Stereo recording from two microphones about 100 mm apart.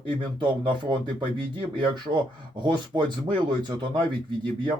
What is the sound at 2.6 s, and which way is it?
Speech, 50° right (ahead or behind).